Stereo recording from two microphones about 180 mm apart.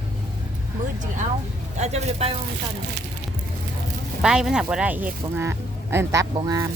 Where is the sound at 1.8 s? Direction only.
35° right (ahead or behind).